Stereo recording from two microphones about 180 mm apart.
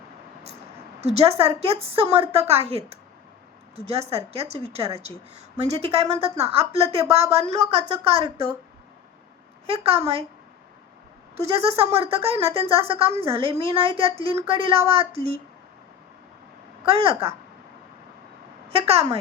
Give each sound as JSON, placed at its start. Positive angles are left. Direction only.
{"t": 1.0, "sound": "a woman's voice", "side_deg": -35}
{"t": 9.6, "sound": "a woman's voice", "side_deg": -30}
{"t": 11.3, "sound": "a woman's voice", "side_deg": -35}
{"t": 16.8, "sound": "a woman's voice", "side_deg": -30}
{"t": 18.7, "sound": "a woman's voice", "side_deg": -35}